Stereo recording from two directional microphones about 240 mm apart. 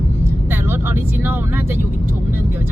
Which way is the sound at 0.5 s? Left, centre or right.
Centre.